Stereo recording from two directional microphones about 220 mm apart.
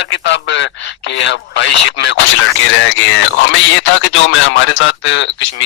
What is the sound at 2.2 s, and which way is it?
Speech, 60° left (ahead or behind).